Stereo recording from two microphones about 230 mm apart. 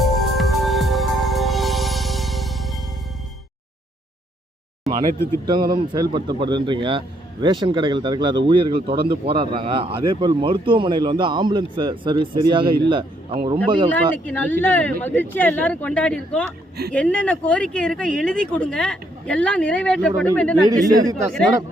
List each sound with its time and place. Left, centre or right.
0.0 s music: centre
5.7 s speech: centre
14.3 s speech: centre
20.7 s speech: centre